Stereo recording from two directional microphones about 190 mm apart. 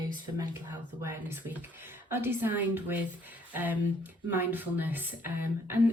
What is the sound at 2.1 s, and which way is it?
Speech, 10° right (ahead or behind).